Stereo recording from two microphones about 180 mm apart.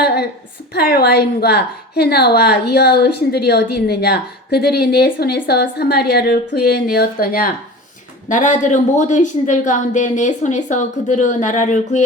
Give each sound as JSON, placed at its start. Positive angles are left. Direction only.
{"t": 0.0, "sound": "a sound", "side_deg": 65}
{"t": 0.7, "sound": "a woman's voice", "side_deg": 60}
{"t": 8.3, "sound": "speech", "side_deg": 45}